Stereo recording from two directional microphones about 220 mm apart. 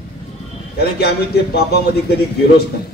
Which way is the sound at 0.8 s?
45° left (ahead or behind).